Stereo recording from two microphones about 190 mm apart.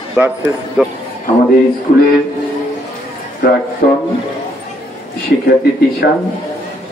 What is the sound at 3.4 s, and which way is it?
Speech, 50° left (ahead or behind).